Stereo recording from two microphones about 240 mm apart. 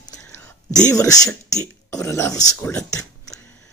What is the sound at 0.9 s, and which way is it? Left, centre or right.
Speech, centre.